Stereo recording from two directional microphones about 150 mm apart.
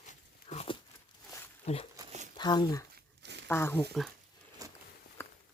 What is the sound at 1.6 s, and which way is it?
Speech, 45° left (ahead or behind).